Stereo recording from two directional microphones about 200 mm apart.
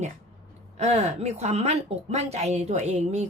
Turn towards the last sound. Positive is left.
turn(degrees=-35)  # may be behind; listen again after turning